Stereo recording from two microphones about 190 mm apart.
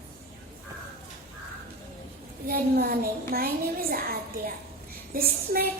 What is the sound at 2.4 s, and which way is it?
A child's voice, 50° right (ahead or behind).